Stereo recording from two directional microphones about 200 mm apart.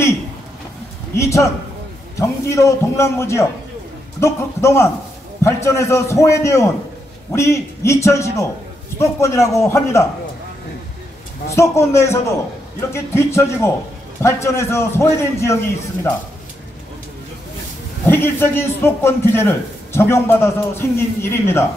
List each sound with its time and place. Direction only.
1.1 s a man's voice: 15° left (ahead or behind)
11.5 s a man's voice: 15° left (ahead or behind)
18.0 s a man's voice: 10° left (ahead or behind)